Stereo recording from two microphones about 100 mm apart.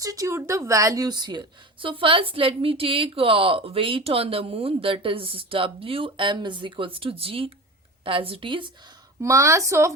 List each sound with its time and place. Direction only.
0.0 s a woman's voice: 35° right (ahead or behind); by 8.7 s 55° right (ahead or behind)
9.2 s a woman's voice: 30° right (ahead or behind)